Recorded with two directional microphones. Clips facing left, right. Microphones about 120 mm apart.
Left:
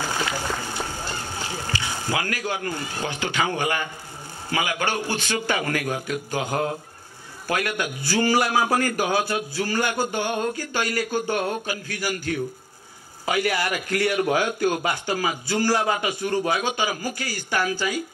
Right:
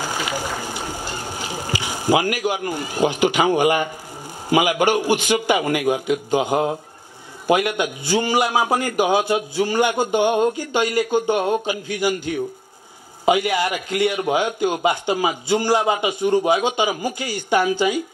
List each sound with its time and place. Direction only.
0.0 s a man's voice: 15° right (ahead or behind)